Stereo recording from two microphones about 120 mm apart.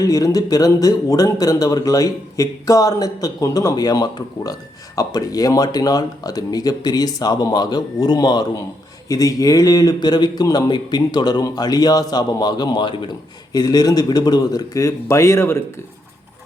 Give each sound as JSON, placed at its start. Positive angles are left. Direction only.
{"t": 0.0, "sound": "a man's voice", "side_deg": 30}